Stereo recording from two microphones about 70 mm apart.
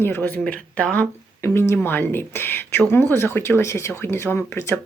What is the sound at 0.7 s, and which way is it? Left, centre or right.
Speech, centre.